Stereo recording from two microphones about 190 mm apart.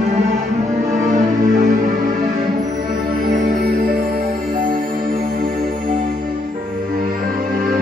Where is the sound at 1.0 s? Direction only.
40° right (ahead or behind).